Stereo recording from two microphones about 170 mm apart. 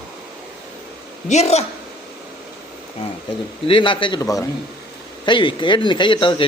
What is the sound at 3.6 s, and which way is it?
Speech, 30° left (ahead or behind).